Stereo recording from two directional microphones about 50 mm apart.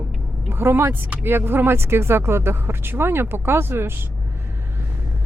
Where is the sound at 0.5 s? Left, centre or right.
Right.